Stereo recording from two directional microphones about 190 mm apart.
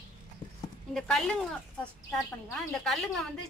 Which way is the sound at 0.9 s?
Centre (ahead or behind).